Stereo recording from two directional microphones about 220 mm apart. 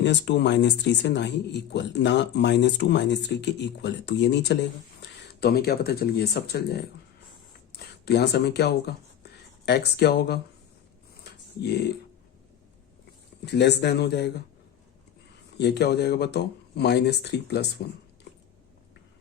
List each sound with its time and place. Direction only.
0.0 s speech: 55° left (ahead or behind)
11.1 s dog: 45° left (ahead or behind)
13.4 s speech: 50° left (ahead or behind)
15.5 s speech: 50° left (ahead or behind)